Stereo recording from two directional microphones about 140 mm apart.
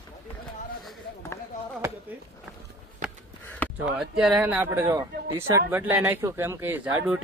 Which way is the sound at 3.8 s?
5° right (ahead or behind).